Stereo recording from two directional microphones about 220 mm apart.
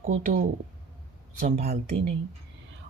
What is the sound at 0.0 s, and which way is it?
Speech, 40° right (ahead or behind).